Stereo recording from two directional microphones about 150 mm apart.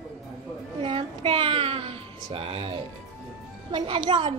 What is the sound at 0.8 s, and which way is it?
A child's voice, 35° right (ahead or behind).